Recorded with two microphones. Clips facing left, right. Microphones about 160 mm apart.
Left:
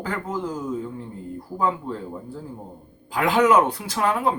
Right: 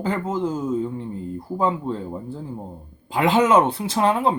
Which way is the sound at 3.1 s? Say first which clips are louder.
Right 1 dB; 25° right (ahead or behind).